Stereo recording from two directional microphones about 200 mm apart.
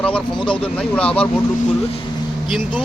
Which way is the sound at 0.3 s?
25° left (ahead or behind).